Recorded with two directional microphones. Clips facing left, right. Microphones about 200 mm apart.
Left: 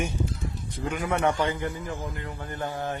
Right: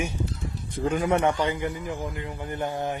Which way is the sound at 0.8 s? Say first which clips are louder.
Right 3 dB; 30° right (ahead or behind).